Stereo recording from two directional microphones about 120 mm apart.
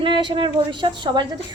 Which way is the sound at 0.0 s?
40° right (ahead or behind).